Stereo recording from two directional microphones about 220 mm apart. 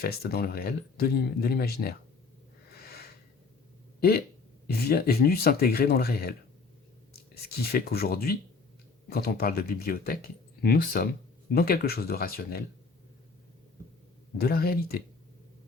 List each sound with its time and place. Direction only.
0.0 s speech: 45° left (ahead or behind)
2.7 s a sound: 45° left (ahead or behind)
4.6 s speech: 45° left (ahead or behind)
7.7 s speech: 45° left (ahead or behind)
14.3 s speech: 45° left (ahead or behind)